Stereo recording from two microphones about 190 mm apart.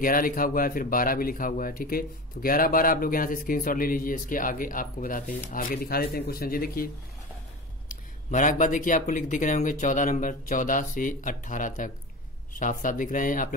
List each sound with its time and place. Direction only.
0.0 s speech: 45° left (ahead or behind)
7.9 s speech: 45° left (ahead or behind)